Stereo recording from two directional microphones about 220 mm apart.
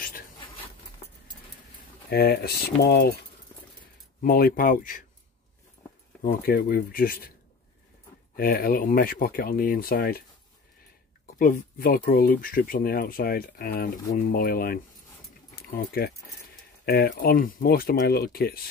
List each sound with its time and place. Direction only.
2.0 s speech: 45° left (ahead or behind)
4.2 s speech: 40° left (ahead or behind)
6.2 s speech: 45° left (ahead or behind)
8.4 s speech: 40° left (ahead or behind)
11.3 s speech: 40° left (ahead or behind)